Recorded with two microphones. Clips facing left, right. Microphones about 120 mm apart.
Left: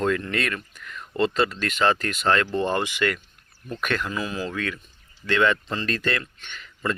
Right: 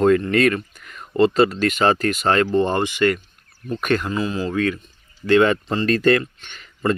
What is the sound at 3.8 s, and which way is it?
Speech, 40° right (ahead or behind).